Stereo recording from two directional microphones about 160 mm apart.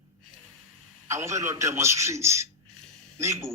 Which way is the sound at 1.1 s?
20° right (ahead or behind).